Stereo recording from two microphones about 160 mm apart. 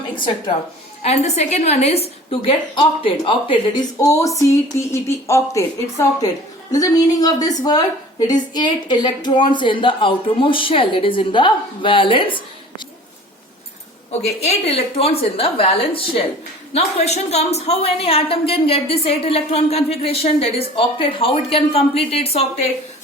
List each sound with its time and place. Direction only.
1.0 s a woman's voice: 40° left (ahead or behind)
14.1 s a woman's voice: 45° left (ahead or behind)